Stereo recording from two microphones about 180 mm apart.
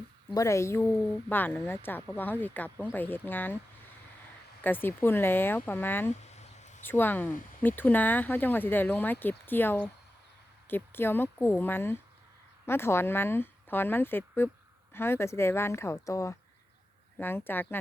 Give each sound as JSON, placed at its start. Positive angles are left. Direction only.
{"t": 0.3, "sound": "a woman's voice", "side_deg": 15}
{"t": 4.6, "sound": "a woman's voice", "side_deg": 10}
{"t": 6.2, "sound": "a sound", "side_deg": 40}
{"t": 6.8, "sound": "a woman's voice", "side_deg": 10}